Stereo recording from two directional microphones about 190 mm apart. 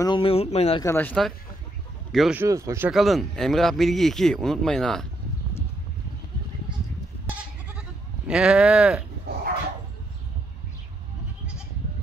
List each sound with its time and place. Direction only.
0.0 s speech: 25° left (ahead or behind)
0.8 s speech: 10° left (ahead or behind)
2.4 s speech: 15° right (ahead or behind)
2.9 s speech: centre (ahead or behind)
8.3 s speech: 5° right (ahead or behind)
9.3 s dog: 60° right (ahead or behind)